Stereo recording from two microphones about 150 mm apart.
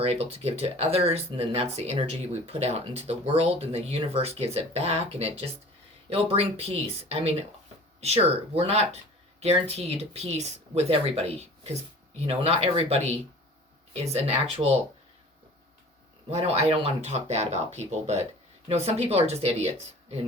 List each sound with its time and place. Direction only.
0.0 s speech: 40° right (ahead or behind)
16.3 s speech: 45° right (ahead or behind)